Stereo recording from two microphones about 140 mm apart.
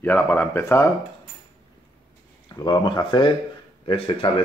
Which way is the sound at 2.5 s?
30° left (ahead or behind).